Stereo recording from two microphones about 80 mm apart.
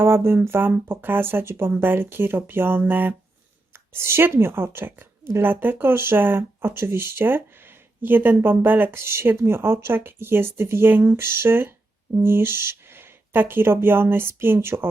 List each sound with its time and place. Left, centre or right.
0.0 s speech: right